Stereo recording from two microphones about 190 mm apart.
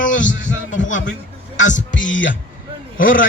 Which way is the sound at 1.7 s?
40° left (ahead or behind).